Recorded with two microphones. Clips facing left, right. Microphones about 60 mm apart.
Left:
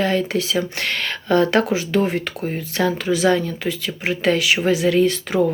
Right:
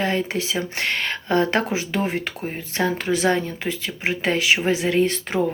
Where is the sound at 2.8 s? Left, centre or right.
Right.